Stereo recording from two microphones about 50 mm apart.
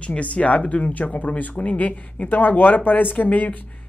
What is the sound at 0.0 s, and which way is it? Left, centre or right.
Speech, left.